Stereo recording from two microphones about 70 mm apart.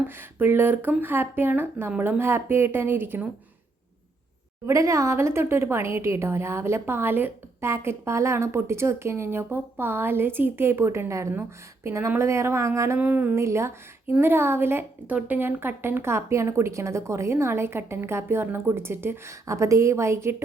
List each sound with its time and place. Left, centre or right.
0.1 s a woman's voice: right
4.6 s a woman's voice: right
13.0 s music: right
13.3 s a woman's voice: right